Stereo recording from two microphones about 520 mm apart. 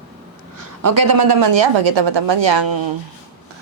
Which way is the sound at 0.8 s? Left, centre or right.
Right.